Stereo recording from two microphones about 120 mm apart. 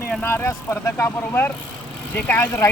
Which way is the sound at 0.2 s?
20° left (ahead or behind).